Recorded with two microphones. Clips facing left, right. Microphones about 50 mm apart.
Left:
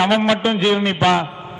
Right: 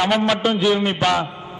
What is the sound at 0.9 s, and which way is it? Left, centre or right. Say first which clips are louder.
Speech: left 3 dB; left.